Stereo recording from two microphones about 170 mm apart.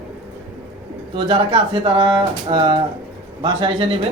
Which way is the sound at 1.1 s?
30° right (ahead or behind).